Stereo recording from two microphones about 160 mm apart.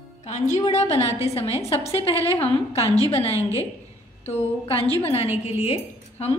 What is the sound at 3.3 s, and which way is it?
Speech, 20° right (ahead or behind).